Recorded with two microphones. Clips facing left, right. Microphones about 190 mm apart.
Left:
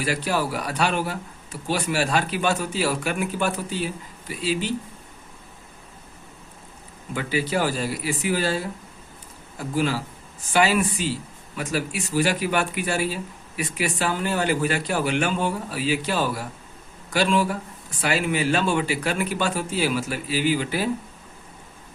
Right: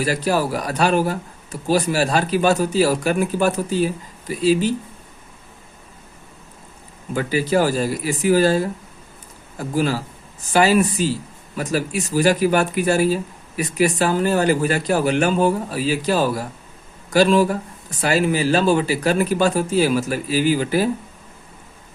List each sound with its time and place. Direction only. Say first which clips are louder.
0.0 s speech: right 5 dB; 40° right (ahead or behind)
7.1 s speech: right 5 dB; 40° right (ahead or behind)